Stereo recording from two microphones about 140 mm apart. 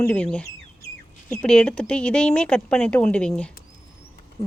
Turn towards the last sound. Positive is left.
turn(degrees=10)  # may be behind; listen again after turning